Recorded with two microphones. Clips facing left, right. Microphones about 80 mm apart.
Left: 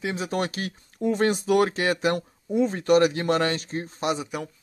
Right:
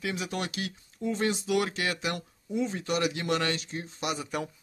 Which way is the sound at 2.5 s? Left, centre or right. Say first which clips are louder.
Left 9 dB; left.